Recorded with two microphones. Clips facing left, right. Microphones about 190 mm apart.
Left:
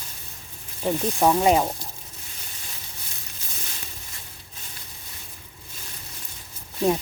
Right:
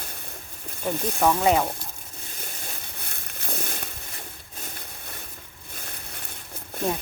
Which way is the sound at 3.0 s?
60° right (ahead or behind).